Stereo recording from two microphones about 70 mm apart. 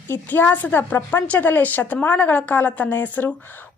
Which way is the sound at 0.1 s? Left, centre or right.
Left.